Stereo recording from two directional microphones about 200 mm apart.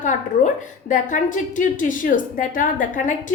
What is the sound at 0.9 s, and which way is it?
A woman's voice, 40° left (ahead or behind).